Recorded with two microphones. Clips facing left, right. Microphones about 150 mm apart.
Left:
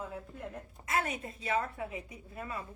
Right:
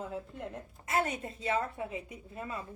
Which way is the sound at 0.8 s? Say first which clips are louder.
Right 2 dB; 30° right (ahead or behind).